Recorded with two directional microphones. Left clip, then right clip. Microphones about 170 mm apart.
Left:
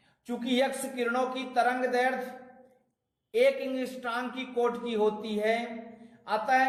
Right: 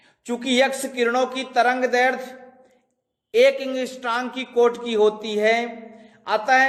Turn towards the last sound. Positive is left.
turn(degrees=-35)  # may be behind; listen again after turning